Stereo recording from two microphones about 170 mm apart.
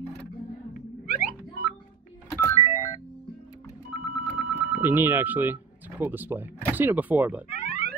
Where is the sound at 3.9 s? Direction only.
35° left (ahead or behind).